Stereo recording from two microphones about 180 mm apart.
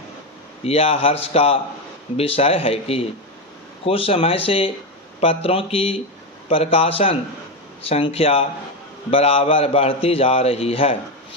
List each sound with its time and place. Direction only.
0.6 s a man's voice: 30° left (ahead or behind)